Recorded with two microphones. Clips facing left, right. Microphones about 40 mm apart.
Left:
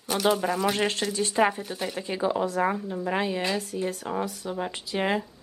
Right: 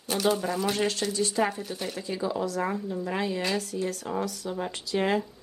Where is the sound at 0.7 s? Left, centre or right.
Left.